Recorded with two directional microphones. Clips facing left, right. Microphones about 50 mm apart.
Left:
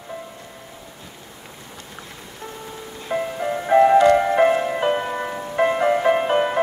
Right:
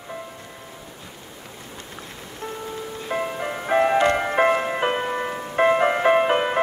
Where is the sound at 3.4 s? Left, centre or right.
Centre.